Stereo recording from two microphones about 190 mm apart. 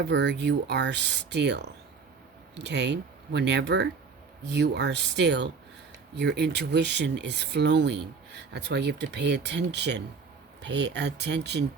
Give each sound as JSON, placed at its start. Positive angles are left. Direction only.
{"t": 0.0, "sound": "speech", "side_deg": -65}